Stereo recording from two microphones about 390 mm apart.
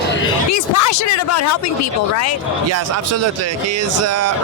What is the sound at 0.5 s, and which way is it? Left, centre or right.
Speech, left.